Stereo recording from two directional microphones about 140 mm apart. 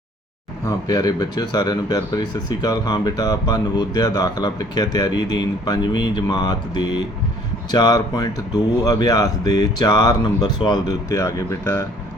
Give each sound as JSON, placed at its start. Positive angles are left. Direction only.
{"t": 0.6, "sound": "speech", "side_deg": 30}